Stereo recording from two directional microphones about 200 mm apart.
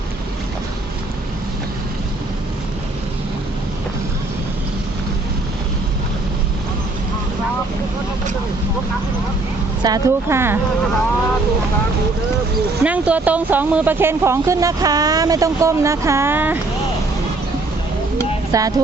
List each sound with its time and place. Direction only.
9.8 s speech: 15° right (ahead or behind)
12.8 s speech: 5° right (ahead or behind)
18.5 s speech: 15° right (ahead or behind)